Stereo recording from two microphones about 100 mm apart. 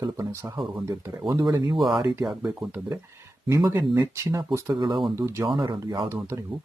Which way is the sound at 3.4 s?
30° right (ahead or behind).